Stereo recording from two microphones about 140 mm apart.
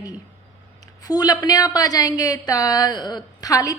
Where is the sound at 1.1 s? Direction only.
30° left (ahead or behind).